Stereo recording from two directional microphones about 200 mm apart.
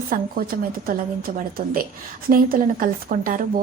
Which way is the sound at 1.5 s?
45° right (ahead or behind).